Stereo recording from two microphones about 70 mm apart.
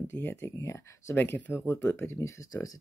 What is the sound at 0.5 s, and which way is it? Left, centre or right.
Speech, left.